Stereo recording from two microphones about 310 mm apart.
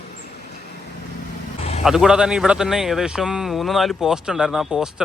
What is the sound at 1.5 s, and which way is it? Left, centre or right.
Vehicle, centre.